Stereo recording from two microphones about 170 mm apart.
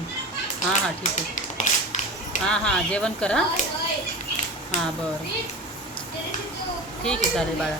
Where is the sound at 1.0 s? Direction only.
50° left (ahead or behind).